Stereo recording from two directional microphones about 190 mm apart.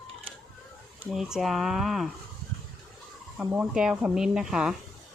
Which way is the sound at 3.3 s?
10° right (ahead or behind).